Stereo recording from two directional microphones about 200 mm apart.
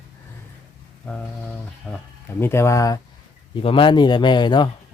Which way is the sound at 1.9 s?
5° left (ahead or behind).